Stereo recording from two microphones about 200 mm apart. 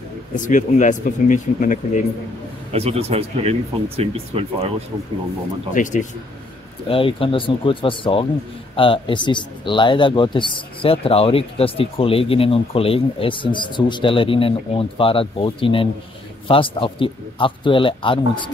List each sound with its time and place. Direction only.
0.4 s speech: 40° left (ahead or behind)
2.7 s speech: 30° right (ahead or behind)
5.8 s speech: 40° left (ahead or behind)
6.9 s speech: 25° left (ahead or behind)